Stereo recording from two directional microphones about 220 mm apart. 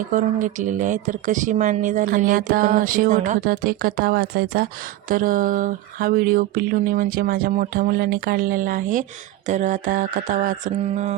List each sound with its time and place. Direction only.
0.1 s speech: 35° right (ahead or behind)